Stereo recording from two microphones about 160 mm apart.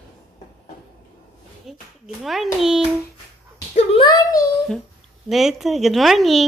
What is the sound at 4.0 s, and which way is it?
Speech, 25° left (ahead or behind).